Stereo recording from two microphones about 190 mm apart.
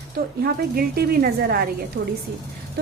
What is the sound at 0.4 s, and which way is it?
A woman's voice, 50° right (ahead or behind).